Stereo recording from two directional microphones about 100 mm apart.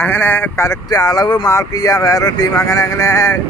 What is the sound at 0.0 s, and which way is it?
Speech, 20° left (ahead or behind).